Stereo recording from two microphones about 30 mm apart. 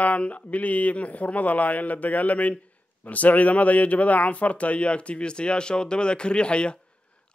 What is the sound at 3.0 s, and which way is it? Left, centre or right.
A man's voice, left.